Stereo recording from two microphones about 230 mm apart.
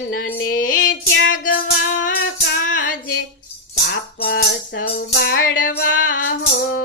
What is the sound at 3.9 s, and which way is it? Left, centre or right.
Music, left.